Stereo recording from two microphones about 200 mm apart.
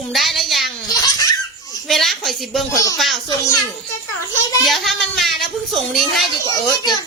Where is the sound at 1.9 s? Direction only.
Centre (ahead or behind).